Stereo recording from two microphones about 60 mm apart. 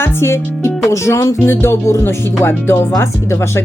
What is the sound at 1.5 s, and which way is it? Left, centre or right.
Speech, left.